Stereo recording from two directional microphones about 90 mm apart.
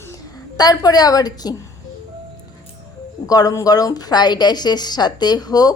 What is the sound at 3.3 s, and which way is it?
Speech, 45° left (ahead or behind).